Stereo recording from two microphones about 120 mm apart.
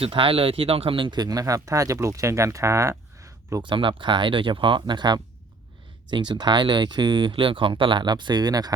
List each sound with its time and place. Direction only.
0.0 s speech: 45° right (ahead or behind); by 2.9 s 25° right (ahead or behind)
3.2 s a sound: 25° right (ahead or behind)
3.6 s speech: 45° right (ahead or behind)